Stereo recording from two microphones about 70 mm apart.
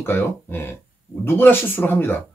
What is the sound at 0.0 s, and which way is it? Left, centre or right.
Speech, left.